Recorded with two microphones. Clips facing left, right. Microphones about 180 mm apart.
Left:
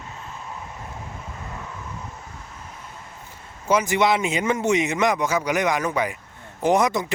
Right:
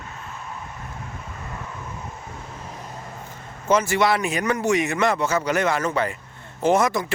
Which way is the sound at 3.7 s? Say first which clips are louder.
Even; 15° left (ahead or behind).